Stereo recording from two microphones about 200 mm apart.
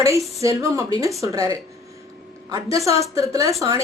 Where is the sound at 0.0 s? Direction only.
15° right (ahead or behind).